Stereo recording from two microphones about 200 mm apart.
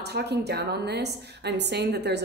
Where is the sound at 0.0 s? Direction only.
55° right (ahead or behind).